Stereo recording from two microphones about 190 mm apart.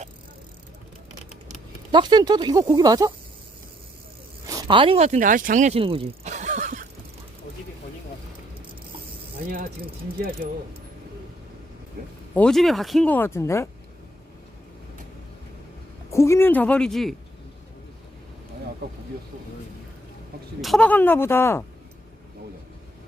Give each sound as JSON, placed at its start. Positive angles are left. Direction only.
{"t": 1.9, "sound": "speech", "side_deg": -25}
{"t": 4.4, "sound": "speech", "side_deg": -20}
{"t": 10.2, "sound": "speech", "side_deg": -50}
{"t": 12.3, "sound": "speech", "side_deg": 5}
{"t": 16.0, "sound": "speech", "side_deg": 15}
{"t": 20.6, "sound": "speech", "side_deg": 0}